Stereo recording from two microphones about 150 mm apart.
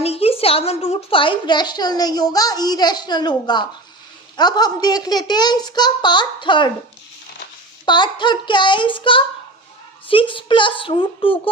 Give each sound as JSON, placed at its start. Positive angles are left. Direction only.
{"t": 0.0, "sound": "a woman's voice", "side_deg": 40}
{"t": 7.9, "sound": "child singing", "side_deg": 30}